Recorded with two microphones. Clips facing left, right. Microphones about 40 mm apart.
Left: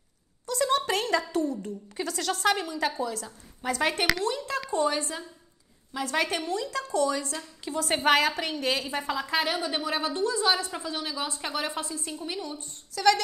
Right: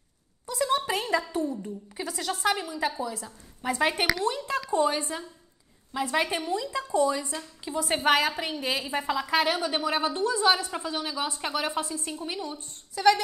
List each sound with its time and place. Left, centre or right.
0.5 s a sound: centre
1.3 s a woman's voice: centre
4.2 s a woman's voice: right
7.9 s a woman's voice: centre
8.2 s a woman's voice: centre
9.0 s a woman's voice: centre
9.6 s speech: right
12.1 s a woman's voice: centre
12.4 s speech: right